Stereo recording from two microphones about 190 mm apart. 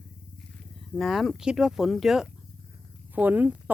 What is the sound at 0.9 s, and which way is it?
Speech, centre (ahead or behind).